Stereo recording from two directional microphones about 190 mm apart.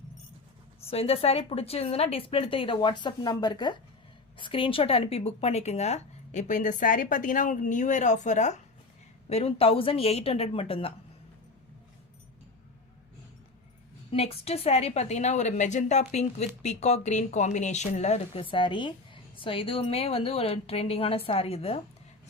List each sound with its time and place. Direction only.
0.9 s a woman's voice: 30° left (ahead or behind)
14.1 s a woman's voice: 30° left (ahead or behind)